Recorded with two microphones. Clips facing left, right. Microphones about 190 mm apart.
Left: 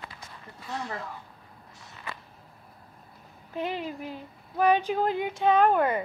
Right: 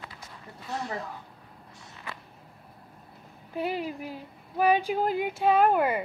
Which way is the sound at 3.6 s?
10° right (ahead or behind).